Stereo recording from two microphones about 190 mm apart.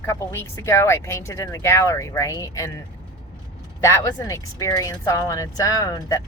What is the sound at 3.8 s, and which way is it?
Speech, 15° left (ahead or behind).